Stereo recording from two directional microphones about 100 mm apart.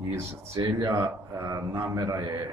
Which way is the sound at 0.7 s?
35° right (ahead or behind).